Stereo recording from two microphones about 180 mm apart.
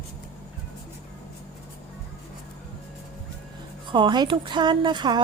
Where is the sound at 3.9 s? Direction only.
25° right (ahead or behind).